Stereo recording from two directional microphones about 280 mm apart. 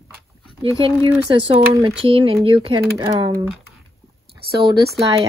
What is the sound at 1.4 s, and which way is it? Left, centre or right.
Speech, right.